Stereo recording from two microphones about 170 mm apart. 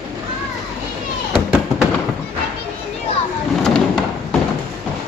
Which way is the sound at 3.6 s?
5° left (ahead or behind).